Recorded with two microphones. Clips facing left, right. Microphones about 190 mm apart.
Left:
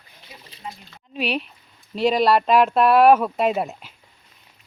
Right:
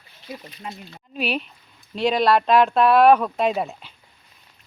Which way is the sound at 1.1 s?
Centre (ahead or behind).